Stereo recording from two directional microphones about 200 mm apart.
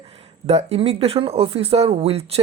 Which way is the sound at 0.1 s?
30° right (ahead or behind).